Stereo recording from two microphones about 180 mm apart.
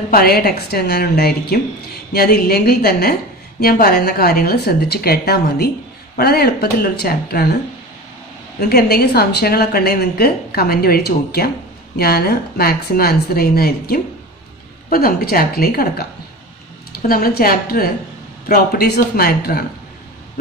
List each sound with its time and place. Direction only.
0.1 s a woman's voice: 60° left (ahead or behind)
8.5 s a woman's voice: 60° left (ahead or behind)